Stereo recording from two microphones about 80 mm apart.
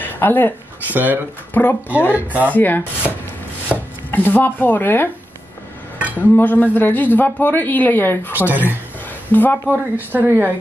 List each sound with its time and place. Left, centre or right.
0.0 s a sound: left
0.9 s speech: right
1.5 s a man's voice: left
2.1 s speech: right
2.5 s a man's voice: left
3.7 s chopping: centre
4.1 s a man's voice: left
6.1 s a man's voice: left
8.3 s speech: right
9.3 s a man's voice: left
9.7 s speech: right